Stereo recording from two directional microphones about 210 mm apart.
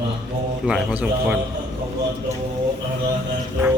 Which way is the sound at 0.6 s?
5° right (ahead or behind).